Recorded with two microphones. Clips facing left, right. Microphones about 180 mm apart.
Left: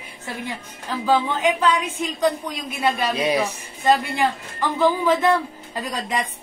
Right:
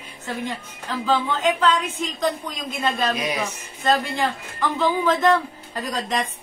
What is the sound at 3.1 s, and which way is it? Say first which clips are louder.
Speech: left 4 dB; 30° left (ahead or behind).